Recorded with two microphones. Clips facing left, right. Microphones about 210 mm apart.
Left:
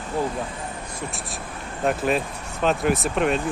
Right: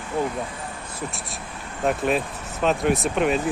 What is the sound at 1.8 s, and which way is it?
Speech, centre (ahead or behind).